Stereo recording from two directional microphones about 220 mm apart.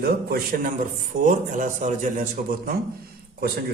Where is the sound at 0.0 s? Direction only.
45° right (ahead or behind).